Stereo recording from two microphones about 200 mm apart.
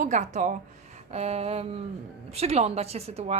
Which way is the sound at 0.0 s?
35° right (ahead or behind).